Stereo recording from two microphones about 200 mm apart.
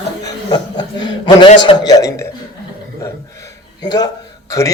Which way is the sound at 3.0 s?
15° left (ahead or behind).